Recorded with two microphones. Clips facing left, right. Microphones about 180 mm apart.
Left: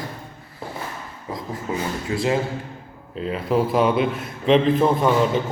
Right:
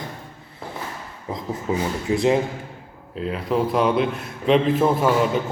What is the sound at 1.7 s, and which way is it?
Speech, 20° right (ahead or behind).